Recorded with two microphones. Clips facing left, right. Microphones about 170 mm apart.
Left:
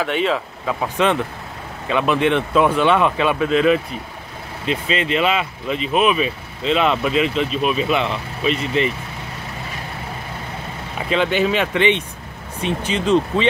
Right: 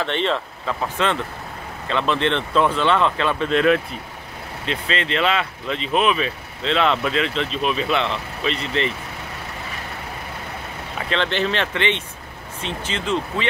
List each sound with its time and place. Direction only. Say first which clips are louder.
0.0 s speech: left 2 dB; 5° left (ahead or behind)
11.1 s speech: left 4 dB; 10° left (ahead or behind)